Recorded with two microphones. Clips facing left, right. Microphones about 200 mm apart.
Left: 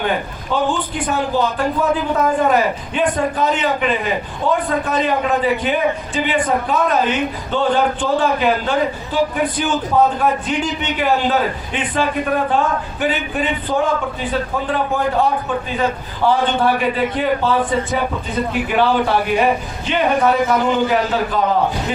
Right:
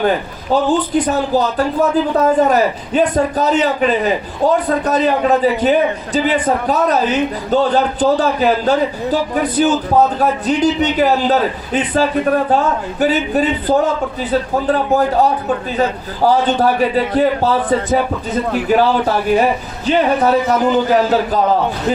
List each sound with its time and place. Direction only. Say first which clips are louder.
0.5 s a man's voice: right 6 dB; 40° right (ahead or behind)